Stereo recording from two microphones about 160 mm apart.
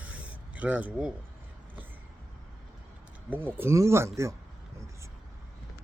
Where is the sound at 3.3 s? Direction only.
15° right (ahead or behind).